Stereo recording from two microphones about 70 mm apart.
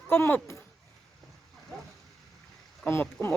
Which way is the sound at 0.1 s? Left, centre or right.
Left.